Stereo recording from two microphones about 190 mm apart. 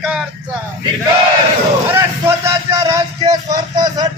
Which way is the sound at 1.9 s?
15° right (ahead or behind).